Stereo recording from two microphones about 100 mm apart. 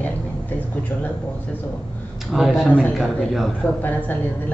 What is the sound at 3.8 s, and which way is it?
Speech, 15° left (ahead or behind).